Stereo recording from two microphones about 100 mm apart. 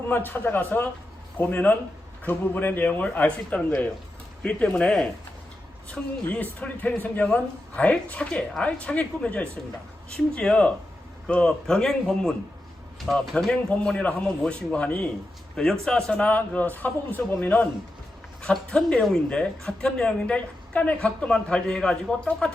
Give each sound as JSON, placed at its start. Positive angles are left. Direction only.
{"t": 0.1, "sound": "a man's voice", "side_deg": 20}
{"t": 18.4, "sound": "a woman's voice", "side_deg": 5}